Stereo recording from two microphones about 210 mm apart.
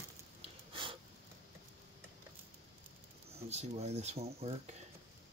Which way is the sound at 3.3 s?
30° right (ahead or behind).